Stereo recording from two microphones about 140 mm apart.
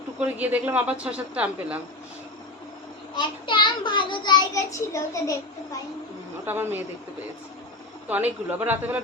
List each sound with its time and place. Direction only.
0.2 s speech: 10° right (ahead or behind)
3.2 s a child's voice: 35° left (ahead or behind)
6.4 s speech: 15° right (ahead or behind)
8.0 s speech: 10° right (ahead or behind)